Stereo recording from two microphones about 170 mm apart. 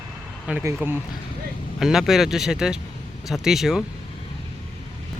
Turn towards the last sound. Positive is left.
turn(degrees=0)  # may be behind; listen again after turning